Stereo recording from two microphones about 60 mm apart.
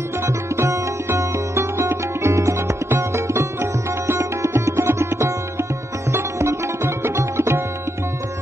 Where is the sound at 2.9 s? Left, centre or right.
Right.